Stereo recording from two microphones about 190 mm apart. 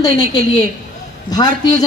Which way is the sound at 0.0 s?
20° left (ahead or behind).